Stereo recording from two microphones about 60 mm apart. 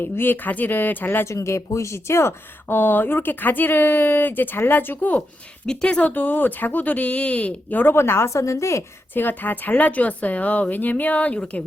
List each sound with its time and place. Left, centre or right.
0.0 s speech: left
1.2 s speech: left
5.6 s speech: centre
6.0 s a woman's voice: left
7.9 s a woman's voice: left
9.1 s a woman's voice: left